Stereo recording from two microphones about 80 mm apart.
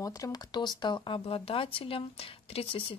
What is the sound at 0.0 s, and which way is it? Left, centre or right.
Speech, left.